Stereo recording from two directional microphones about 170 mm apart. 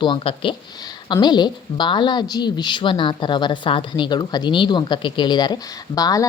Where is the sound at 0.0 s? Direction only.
30° left (ahead or behind).